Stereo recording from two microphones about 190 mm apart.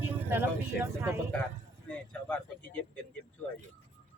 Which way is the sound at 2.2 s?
5° left (ahead or behind).